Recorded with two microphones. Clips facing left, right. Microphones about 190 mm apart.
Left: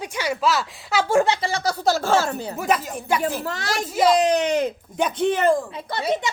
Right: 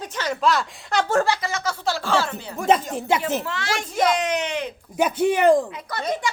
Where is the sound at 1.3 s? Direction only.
30° left (ahead or behind).